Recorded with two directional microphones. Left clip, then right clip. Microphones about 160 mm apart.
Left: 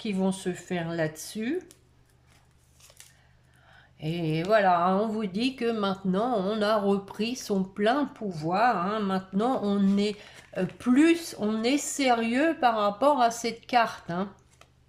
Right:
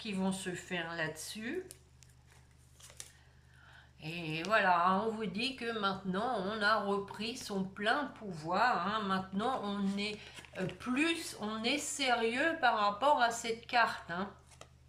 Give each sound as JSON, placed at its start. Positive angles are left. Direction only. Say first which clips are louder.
{"t": 0.0, "sound": "speech", "louder": "left 8 dB", "side_deg": 40}
{"t": 4.0, "sound": "speech", "louder": "left 9 dB", "side_deg": 45}